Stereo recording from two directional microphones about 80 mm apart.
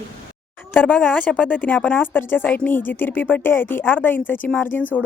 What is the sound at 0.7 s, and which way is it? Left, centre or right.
A woman's voice, left.